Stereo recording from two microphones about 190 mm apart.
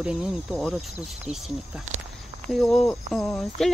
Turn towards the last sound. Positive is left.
turn(degrees=0)  # may be behind; listen again after turning